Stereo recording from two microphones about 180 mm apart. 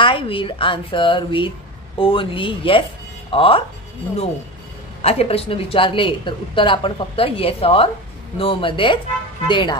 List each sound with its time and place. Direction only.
0.0 s a woman's voice: 30° left (ahead or behind)
5.0 s a woman's voice: 35° left (ahead or behind)